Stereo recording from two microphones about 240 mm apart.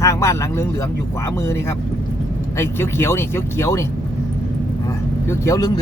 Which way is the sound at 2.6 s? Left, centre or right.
Centre.